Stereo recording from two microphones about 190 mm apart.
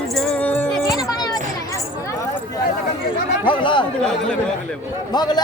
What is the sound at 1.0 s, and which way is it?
Children playing, 20° left (ahead or behind).